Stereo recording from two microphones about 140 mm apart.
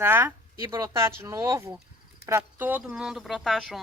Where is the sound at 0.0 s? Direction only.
15° right (ahead or behind).